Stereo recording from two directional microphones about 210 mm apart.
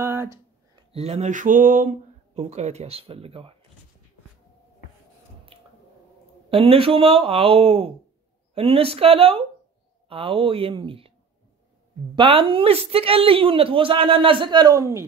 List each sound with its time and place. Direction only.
0.0 s a sound: 10° right (ahead or behind)
0.9 s speech: 30° right (ahead or behind)
5.5 s squish: 25° right (ahead or behind)
6.5 s speech: 25° right (ahead or behind)
12.2 s speech: 25° right (ahead or behind)